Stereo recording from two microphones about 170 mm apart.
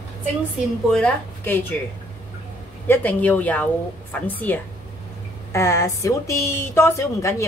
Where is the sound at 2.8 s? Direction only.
10° left (ahead or behind).